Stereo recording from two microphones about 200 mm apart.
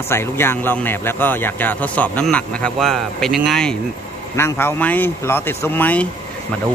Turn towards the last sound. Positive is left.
turn(degrees=10)  # may be behind; listen again after turning